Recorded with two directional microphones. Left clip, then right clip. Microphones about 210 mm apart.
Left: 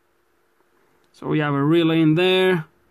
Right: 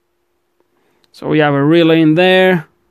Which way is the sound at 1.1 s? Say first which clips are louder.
Right 10 dB; 35° right (ahead or behind).